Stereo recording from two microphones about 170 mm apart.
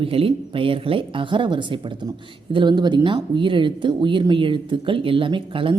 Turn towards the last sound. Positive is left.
turn(degrees=-30)  # may be behind; listen again after turning